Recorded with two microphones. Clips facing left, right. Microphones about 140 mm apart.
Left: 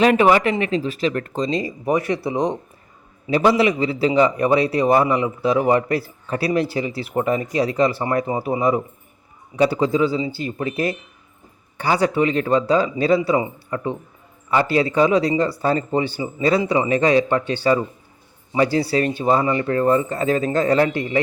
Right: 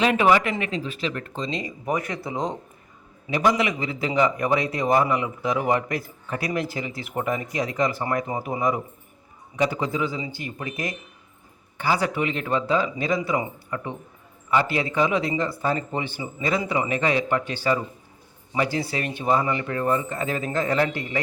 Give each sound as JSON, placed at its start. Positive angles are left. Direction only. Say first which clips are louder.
{"t": 0.0, "sound": "a man's voice", "louder": "left 5 dB", "side_deg": 40}
{"t": 1.8, "sound": "speech", "louder": "left 6 dB", "side_deg": 25}
{"t": 3.2, "sound": "a man's voice", "louder": "left 6 dB", "side_deg": 30}
{"t": 14.9, "sound": "a man's voice", "louder": "left 5 dB", "side_deg": 35}